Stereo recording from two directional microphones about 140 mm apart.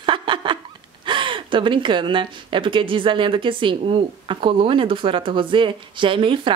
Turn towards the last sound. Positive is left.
turn(degrees=-35)  # may be behind; listen again after turning